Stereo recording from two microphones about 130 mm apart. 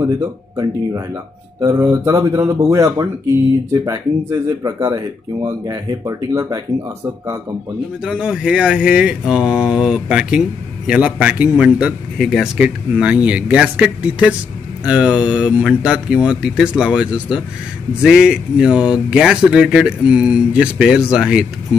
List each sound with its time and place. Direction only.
0.0 s speech: 25° right (ahead or behind)
8.0 s speech: 5° right (ahead or behind)